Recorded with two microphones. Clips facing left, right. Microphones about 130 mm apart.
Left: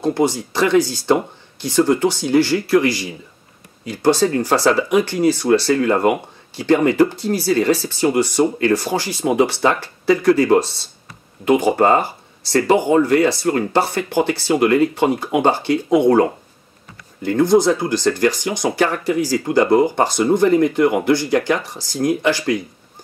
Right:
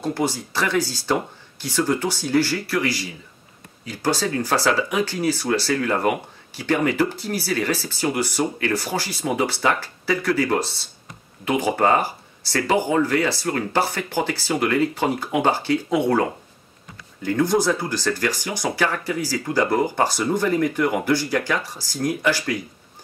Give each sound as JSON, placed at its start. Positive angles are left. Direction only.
{"t": 0.0, "sound": "speech", "side_deg": 20}
{"t": 17.4, "sound": "speech", "side_deg": 15}